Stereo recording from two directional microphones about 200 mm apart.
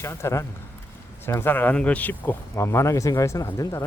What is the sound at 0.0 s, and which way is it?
Speech, 15° left (ahead or behind).